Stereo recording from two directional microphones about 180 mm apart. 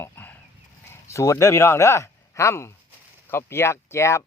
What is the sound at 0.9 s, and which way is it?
Speech, 15° left (ahead or behind).